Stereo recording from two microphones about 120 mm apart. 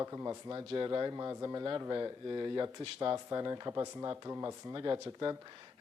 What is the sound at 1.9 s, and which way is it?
Speech, 40° right (ahead or behind).